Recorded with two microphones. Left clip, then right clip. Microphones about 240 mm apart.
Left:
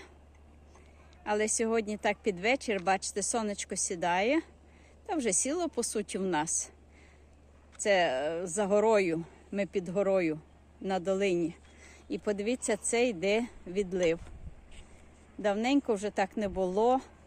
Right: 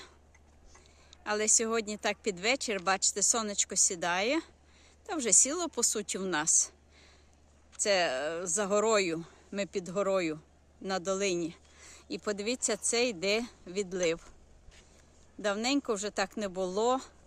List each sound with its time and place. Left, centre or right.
1.1 s speech: centre
15.4 s speech: centre